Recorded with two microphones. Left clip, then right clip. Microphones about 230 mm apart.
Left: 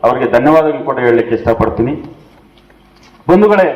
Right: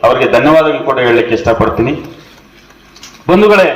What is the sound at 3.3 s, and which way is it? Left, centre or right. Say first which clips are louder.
Speech: right 2 dB; right.